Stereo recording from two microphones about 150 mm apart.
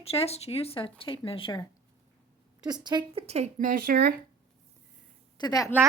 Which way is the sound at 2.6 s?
30° right (ahead or behind).